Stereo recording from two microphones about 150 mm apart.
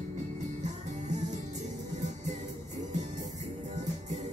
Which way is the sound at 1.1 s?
50° right (ahead or behind).